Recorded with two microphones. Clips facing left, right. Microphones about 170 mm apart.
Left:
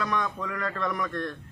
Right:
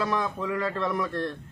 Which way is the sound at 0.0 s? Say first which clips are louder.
Right 2 dB; 30° right (ahead or behind).